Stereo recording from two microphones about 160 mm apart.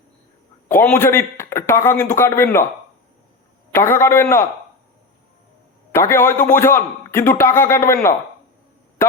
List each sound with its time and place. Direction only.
0.7 s a man's voice: 15° left (ahead or behind)
3.7 s a man's voice: 15° left (ahead or behind)
5.9 s a man's voice: 15° left (ahead or behind)